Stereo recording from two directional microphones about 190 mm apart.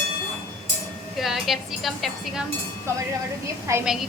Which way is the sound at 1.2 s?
Centre (ahead or behind).